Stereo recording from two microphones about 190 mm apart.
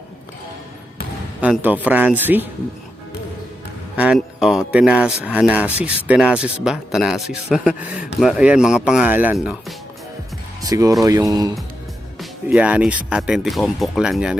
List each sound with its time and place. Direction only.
1.4 s speech: 10° right (ahead or behind)
3.9 s speech: 5° right (ahead or behind)
10.6 s speech: 20° right (ahead or behind)
12.2 s speech: 5° right (ahead or behind)